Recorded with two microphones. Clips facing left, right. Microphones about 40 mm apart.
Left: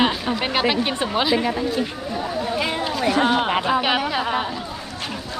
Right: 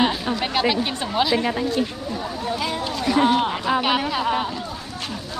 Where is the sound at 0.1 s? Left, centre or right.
Centre.